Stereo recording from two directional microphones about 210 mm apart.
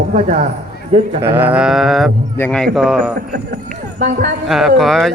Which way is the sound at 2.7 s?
Centre (ahead or behind).